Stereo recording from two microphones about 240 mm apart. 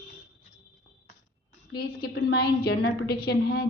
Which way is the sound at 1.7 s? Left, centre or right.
Left.